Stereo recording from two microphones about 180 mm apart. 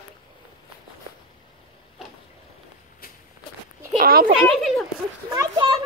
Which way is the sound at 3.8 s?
55° right (ahead or behind).